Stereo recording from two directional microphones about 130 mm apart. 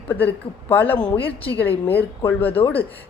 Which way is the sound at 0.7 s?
15° left (ahead or behind).